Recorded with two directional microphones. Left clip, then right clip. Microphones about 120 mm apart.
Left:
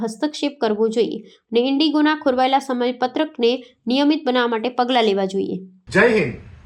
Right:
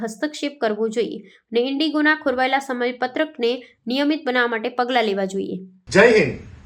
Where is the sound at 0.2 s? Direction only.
25° left (ahead or behind).